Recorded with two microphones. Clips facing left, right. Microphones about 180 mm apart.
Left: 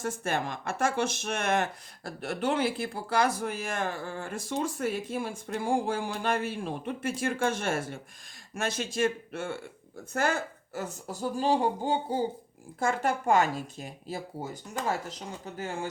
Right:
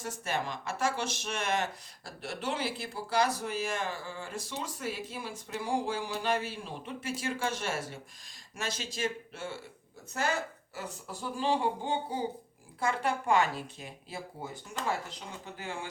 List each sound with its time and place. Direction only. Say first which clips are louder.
0.0 s speech: left 4 dB; 50° left (ahead or behind)